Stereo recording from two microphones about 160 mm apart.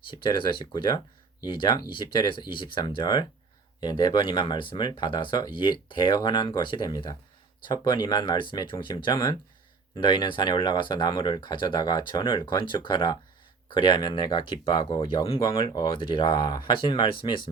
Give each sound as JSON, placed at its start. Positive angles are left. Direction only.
{"t": 0.1, "sound": "speech", "side_deg": 30}